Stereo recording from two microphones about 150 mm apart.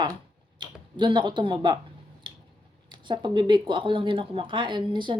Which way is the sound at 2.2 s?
30° right (ahead or behind).